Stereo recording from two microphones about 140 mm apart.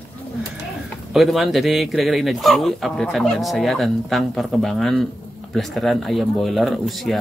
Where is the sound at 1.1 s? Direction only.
Centre (ahead or behind).